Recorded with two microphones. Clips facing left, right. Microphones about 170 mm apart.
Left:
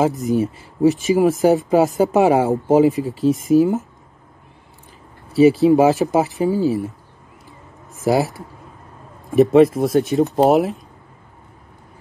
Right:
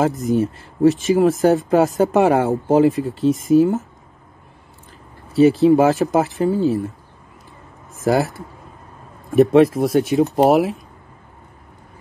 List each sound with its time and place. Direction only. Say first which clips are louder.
0.0 s speech: even; centre (ahead or behind)
5.3 s speech: even; centre (ahead or behind)
8.0 s speech: even; centre (ahead or behind)
9.3 s speech: even; centre (ahead or behind)